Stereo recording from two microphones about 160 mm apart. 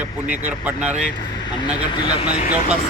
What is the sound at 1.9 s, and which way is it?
Speech, 30° left (ahead or behind).